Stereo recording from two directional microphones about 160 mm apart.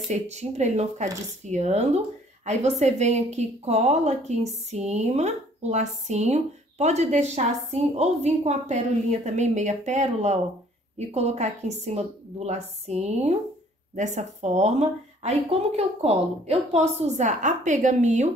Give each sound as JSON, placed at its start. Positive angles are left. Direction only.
{"t": 0.1, "sound": "speech", "side_deg": -45}